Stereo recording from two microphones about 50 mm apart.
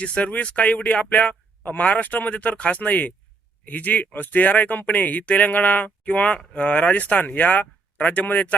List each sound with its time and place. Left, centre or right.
0.0 s speech: left
1.3 s a sound: left
1.8 s speech: left